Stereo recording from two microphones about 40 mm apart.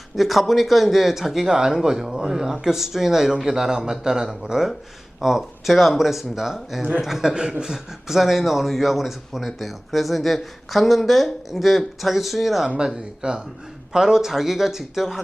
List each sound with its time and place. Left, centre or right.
0.2 s speech: centre
12.6 s speech: centre